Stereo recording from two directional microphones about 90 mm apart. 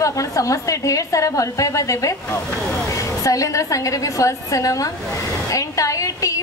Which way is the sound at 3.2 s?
40° left (ahead or behind).